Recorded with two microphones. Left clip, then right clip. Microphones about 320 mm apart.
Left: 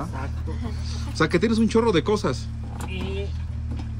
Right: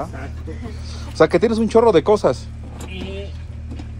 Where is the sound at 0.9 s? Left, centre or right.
Centre.